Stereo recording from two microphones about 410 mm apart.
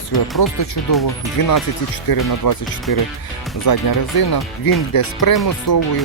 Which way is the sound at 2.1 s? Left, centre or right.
Left.